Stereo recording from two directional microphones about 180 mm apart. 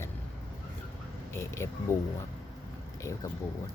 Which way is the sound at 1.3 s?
15° left (ahead or behind).